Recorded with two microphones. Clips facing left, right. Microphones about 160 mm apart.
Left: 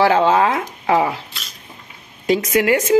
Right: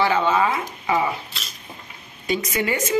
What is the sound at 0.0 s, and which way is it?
Speech, 85° left.